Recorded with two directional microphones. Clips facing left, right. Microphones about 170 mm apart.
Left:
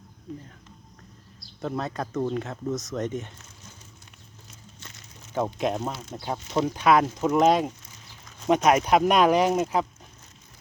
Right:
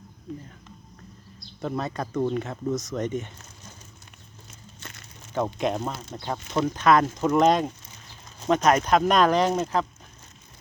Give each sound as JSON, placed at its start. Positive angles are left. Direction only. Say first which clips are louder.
{"t": 1.6, "sound": "speech", "louder": "right 1 dB", "side_deg": 0}
{"t": 4.8, "sound": "a sound", "louder": "right 5 dB", "side_deg": -60}
{"t": 5.3, "sound": "speech", "louder": "even", "side_deg": 5}